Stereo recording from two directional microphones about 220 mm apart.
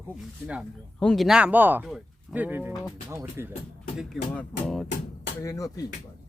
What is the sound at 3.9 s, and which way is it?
Speech, centre (ahead or behind).